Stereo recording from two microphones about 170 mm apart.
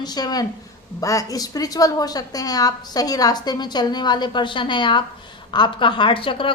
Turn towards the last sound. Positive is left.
turn(degrees=30)  # may be behind; listen again after turning